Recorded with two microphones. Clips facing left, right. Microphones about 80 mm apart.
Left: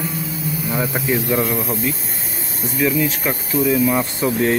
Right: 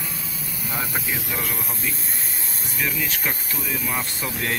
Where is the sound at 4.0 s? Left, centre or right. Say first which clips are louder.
Left 10 dB; left.